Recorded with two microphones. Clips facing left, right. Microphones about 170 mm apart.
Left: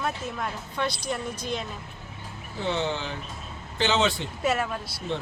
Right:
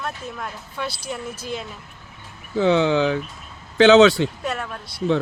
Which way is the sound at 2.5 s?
90° right.